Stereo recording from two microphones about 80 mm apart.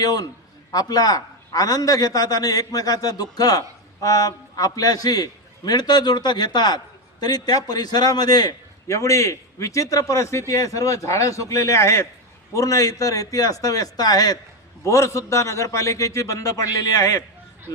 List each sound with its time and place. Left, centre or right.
0.0 s a man's voice: left
8.9 s a man's voice: left
14.8 s a man's voice: left